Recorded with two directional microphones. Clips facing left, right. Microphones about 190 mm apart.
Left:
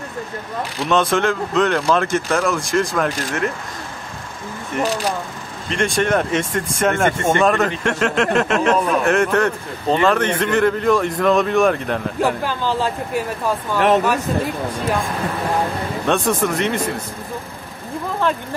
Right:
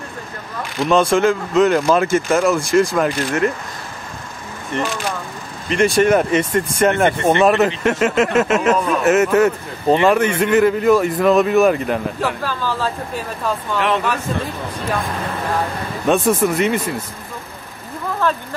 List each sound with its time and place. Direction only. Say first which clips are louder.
0.7 s speech: right 3 dB; centre (ahead or behind)
4.7 s speech: left 1 dB; 5° left (ahead or behind)
5.7 s speech: right 5 dB; 5° right (ahead or behind)
12.4 s speech: left 1 dB; 20° left (ahead or behind)
13.7 s speech: left 5 dB; 45° left (ahead or behind)
16.1 s speech: right 3 dB; centre (ahead or behind)